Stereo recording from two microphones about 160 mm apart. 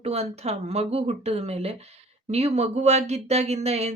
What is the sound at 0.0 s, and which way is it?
Speech, 40° right (ahead or behind).